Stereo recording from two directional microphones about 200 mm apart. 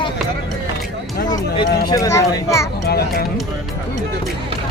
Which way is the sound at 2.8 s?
50° left (ahead or behind).